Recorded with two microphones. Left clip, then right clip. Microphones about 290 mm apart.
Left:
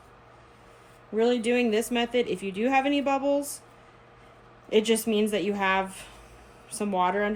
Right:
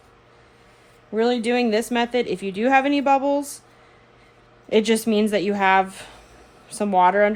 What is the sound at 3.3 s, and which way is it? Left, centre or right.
Speech, centre.